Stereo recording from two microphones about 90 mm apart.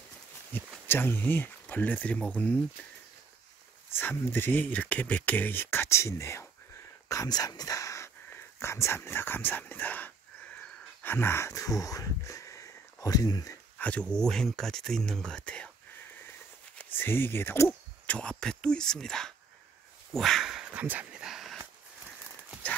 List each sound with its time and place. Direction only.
0.5 s speech: 20° left (ahead or behind)
3.9 s speech: 25° left (ahead or behind)
7.1 s speech: 45° left (ahead or behind)
13.7 s speech: 15° left (ahead or behind)
16.7 s speech: 25° left (ahead or behind); by 19.3 s 5° left (ahead or behind)
20.1 s a sound: centre (ahead or behind)